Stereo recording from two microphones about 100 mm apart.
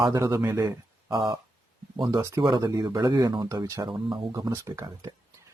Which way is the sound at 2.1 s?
30° right (ahead or behind).